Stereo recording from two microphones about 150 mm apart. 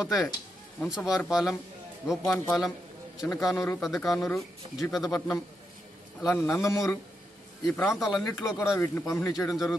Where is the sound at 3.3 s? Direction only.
Centre (ahead or behind).